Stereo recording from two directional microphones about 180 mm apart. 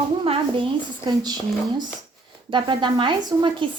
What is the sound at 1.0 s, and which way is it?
Speech, 20° right (ahead or behind).